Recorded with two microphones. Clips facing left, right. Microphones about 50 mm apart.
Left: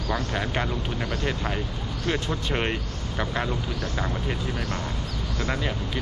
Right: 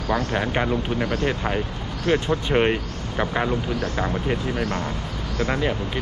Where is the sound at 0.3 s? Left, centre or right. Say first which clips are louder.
Right 5 dB; centre.